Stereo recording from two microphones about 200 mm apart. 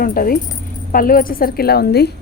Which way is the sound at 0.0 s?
45° left (ahead or behind).